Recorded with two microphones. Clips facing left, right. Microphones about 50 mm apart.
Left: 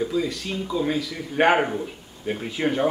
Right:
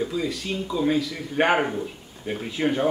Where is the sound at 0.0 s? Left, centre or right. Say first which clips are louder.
Left 2 dB; centre.